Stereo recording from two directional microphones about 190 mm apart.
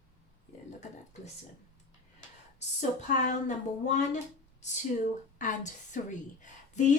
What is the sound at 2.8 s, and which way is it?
A woman's voice, 40° left (ahead or behind).